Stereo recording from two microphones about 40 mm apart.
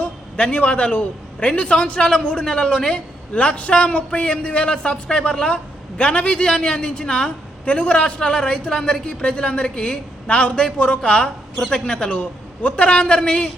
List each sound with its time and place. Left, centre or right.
0.0 s a man's voice: left